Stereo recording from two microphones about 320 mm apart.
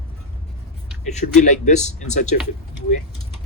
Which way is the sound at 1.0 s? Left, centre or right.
Left.